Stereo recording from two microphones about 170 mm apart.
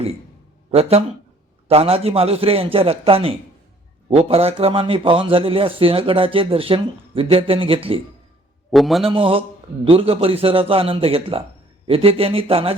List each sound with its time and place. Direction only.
0.7 s a man's voice: 40° right (ahead or behind)
8.7 s a man's voice: centre (ahead or behind)
9.0 s a man's voice: 30° right (ahead or behind)